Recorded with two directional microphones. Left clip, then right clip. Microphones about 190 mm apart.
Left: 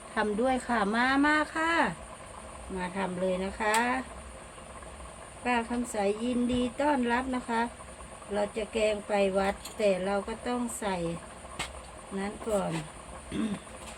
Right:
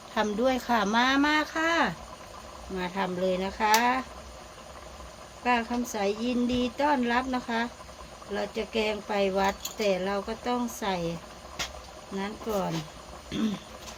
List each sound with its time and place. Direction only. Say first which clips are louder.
0.1 s speech: right 2 dB; 30° right (ahead or behind)
5.4 s speech: right 3 dB; 35° right (ahead or behind)
13.3 s speech: right 3 dB; 40° right (ahead or behind)